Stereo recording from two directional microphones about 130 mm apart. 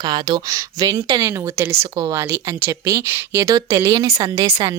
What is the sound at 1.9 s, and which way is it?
Speech, 30° right (ahead or behind).